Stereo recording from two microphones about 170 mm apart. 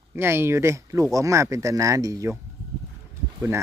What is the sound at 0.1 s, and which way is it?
Speech, 15° right (ahead or behind).